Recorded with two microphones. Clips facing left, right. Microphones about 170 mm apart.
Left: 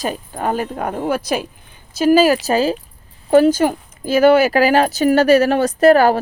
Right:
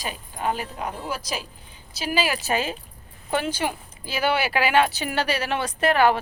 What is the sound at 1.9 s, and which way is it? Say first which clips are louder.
Speech: left 13 dB; 45° left (ahead or behind).